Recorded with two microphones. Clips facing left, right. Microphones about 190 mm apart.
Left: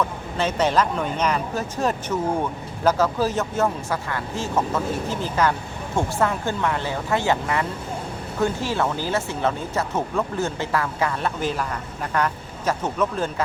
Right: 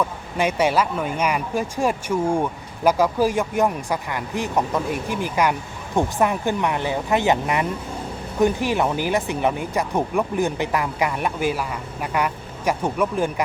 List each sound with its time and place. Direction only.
0.3 s speech: 10° right (ahead or behind)